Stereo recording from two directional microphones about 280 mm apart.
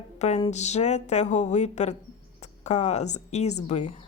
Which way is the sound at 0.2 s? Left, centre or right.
Left.